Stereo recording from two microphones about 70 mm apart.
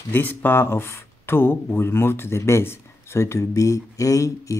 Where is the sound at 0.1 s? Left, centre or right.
Left.